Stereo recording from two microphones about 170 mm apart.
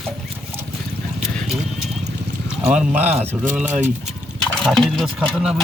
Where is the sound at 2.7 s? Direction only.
10° right (ahead or behind).